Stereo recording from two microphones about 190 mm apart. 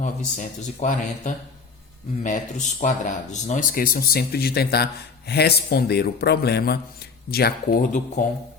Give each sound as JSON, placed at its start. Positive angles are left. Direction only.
{"t": 0.0, "sound": "speech", "side_deg": 40}